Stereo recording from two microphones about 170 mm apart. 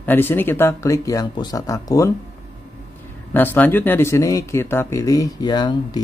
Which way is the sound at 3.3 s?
10° left (ahead or behind).